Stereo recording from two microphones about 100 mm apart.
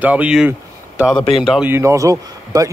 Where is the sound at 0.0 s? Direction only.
15° right (ahead or behind).